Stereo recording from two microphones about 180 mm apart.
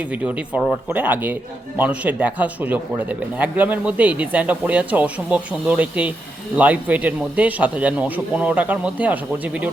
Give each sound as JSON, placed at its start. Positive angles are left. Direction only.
{"t": 0.1, "sound": "speech", "side_deg": -10}